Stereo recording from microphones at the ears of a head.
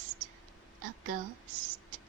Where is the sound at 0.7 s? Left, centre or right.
Right.